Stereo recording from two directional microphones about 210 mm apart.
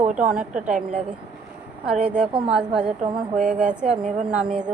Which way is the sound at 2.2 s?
25° right (ahead or behind).